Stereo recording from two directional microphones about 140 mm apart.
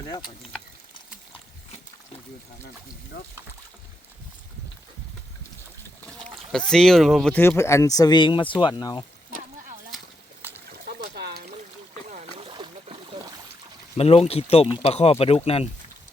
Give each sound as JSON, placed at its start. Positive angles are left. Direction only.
{"t": 6.5, "sound": "speech", "side_deg": 5}
{"t": 7.4, "sound": "speech", "side_deg": 20}
{"t": 12.5, "sound": "a sound", "side_deg": -35}
{"t": 13.9, "sound": "speech", "side_deg": 45}